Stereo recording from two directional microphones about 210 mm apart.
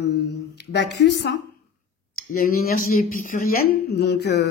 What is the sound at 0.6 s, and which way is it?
Speech, 55° left (ahead or behind).